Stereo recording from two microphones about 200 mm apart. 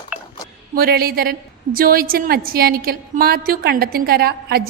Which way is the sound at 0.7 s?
50° right (ahead or behind).